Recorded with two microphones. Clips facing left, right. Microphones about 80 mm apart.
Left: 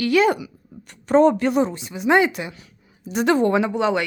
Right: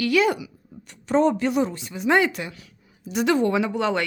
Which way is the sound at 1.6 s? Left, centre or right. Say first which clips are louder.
Left 2 dB; left.